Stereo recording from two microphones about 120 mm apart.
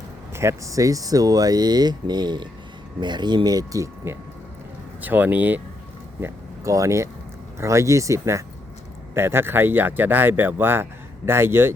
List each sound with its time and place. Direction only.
0.3 s speech: 25° right (ahead or behind)
6.1 s speech: 25° right (ahead or behind)